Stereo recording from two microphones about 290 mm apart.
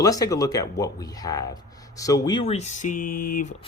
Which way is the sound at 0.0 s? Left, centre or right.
Centre.